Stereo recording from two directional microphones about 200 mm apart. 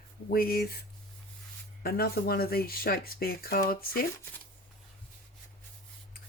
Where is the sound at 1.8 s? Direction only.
50° left (ahead or behind).